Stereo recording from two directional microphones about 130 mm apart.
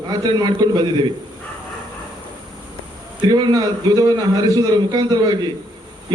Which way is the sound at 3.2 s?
35° right (ahead or behind).